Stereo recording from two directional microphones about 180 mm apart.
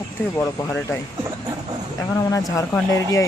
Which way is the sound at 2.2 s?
20° left (ahead or behind).